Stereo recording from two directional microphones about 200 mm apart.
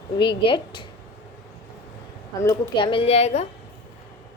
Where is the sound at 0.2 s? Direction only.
25° left (ahead or behind).